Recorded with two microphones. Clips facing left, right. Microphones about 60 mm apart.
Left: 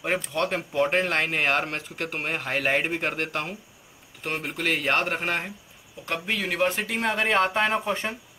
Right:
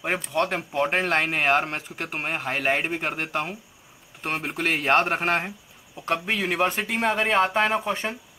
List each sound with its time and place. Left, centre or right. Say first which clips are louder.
0.0 s speech: right 1 dB; centre
4.2 s speech: right 2 dB; right
6.2 s speech: left 1 dB; right
6.9 s speech: right 1 dB; centre